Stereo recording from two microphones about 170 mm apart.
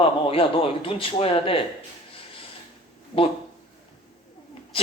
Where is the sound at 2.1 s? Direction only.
30° left (ahead or behind).